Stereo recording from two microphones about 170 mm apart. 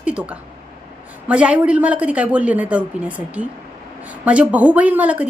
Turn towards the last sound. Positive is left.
turn(degrees=-10)  # may be behind; listen again after turning